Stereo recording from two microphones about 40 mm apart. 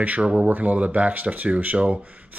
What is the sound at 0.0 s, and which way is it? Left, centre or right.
Speech, right.